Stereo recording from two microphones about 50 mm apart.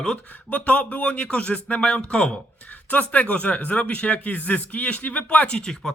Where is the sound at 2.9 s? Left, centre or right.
Left.